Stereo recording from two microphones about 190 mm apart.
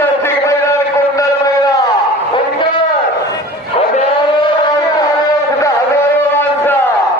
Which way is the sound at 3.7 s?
35° left (ahead or behind).